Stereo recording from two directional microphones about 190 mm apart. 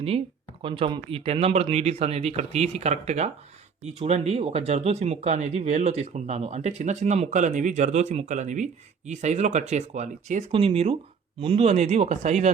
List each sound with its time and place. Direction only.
0.6 s speech: 25° right (ahead or behind)